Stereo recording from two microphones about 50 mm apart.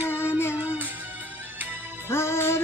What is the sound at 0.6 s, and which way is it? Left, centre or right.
Music, right.